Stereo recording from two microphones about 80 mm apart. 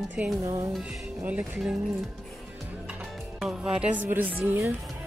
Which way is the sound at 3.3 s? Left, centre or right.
Centre.